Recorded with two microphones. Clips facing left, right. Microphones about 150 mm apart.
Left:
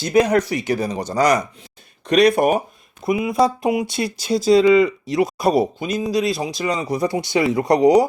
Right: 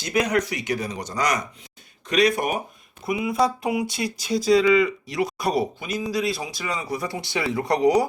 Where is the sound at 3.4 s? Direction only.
20° left (ahead or behind).